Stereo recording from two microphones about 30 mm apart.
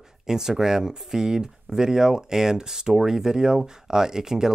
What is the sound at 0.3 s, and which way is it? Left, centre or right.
Speech, centre.